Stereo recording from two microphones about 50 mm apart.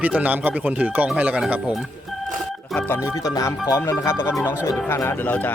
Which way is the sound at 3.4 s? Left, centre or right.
Left.